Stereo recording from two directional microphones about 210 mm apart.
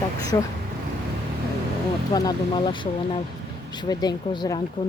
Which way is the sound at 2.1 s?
20° left (ahead or behind).